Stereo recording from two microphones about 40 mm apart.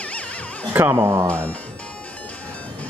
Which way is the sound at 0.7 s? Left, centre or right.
Right.